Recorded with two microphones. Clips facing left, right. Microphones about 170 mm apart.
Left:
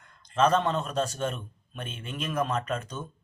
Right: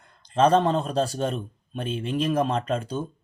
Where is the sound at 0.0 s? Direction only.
30° right (ahead or behind).